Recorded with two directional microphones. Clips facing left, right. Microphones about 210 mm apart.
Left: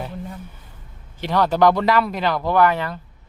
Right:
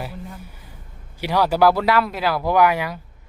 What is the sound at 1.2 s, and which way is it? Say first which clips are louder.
Speech: even; 10° right (ahead or behind).